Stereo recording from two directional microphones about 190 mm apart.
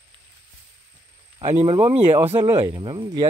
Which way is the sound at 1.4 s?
30° right (ahead or behind).